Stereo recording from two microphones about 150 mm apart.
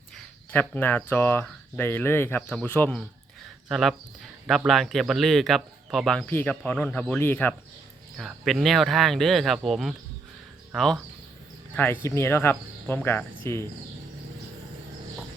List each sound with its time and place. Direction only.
0.5 s speech: 10° left (ahead or behind)
3.7 s speech: centre (ahead or behind)
8.1 s speech: centre (ahead or behind)
11.7 s speech: 15° left (ahead or behind)